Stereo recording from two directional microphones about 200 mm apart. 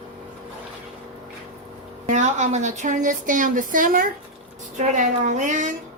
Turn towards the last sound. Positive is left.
turn(degrees=-40)  # may be behind; listen again after turning